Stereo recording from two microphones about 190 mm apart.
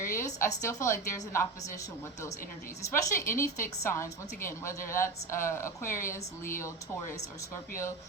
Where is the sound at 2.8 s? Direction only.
15° left (ahead or behind).